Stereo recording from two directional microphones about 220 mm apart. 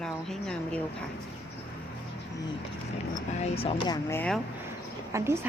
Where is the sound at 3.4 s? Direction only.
30° left (ahead or behind).